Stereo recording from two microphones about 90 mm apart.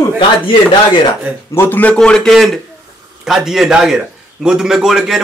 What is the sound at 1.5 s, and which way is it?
Speech, 20° left (ahead or behind).